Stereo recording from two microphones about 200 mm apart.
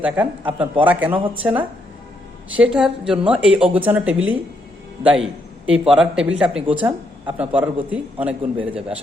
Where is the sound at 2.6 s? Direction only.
5° right (ahead or behind).